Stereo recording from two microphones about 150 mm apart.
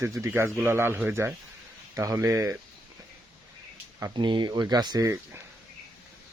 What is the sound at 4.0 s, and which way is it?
Speech, 30° right (ahead or behind).